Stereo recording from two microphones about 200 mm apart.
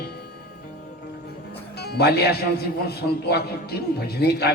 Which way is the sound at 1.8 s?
55° left (ahead or behind).